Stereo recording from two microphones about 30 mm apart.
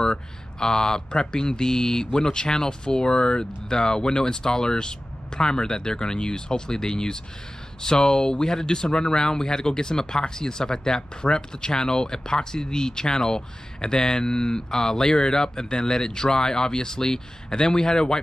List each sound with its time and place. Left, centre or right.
0.0 s speech: left